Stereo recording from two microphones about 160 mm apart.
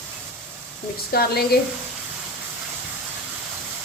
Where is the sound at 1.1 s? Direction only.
70° left (ahead or behind).